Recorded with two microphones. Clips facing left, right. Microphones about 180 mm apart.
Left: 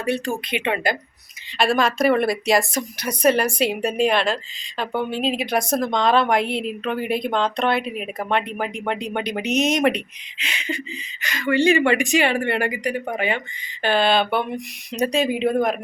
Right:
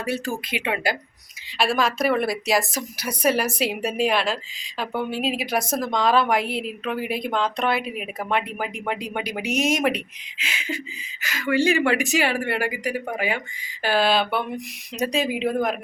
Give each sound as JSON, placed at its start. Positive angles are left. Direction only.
{"t": 0.0, "sound": "a woman's voice", "side_deg": -5}